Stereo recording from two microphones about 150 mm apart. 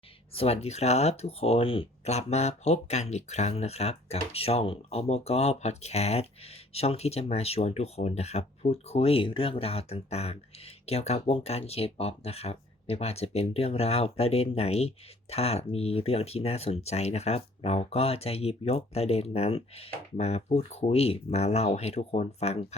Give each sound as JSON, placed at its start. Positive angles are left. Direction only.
{"t": 0.3, "sound": "speech", "side_deg": 45}